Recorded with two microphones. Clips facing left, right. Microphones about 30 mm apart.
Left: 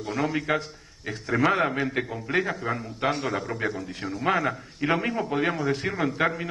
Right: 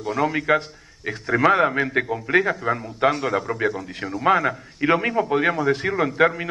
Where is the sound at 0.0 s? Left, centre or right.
Centre.